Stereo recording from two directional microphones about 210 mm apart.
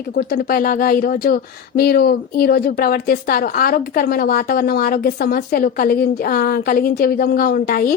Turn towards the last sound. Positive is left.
turn(degrees=45)  # may be behind; listen again after turning